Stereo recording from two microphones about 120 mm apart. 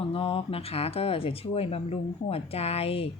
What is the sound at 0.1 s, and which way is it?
Speech, 55° left (ahead or behind).